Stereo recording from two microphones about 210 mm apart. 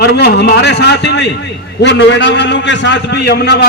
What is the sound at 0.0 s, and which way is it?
A man's voice, 50° left (ahead or behind).